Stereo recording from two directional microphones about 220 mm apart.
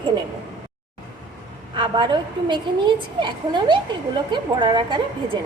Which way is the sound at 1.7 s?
20° right (ahead or behind).